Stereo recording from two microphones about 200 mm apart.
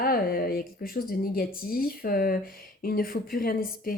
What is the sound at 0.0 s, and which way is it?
A woman's voice, 45° left (ahead or behind).